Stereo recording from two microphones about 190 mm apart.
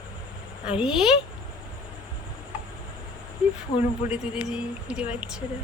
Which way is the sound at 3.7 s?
25° left (ahead or behind).